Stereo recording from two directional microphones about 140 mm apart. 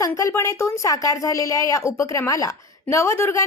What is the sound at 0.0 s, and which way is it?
A woman's voice, 25° left (ahead or behind).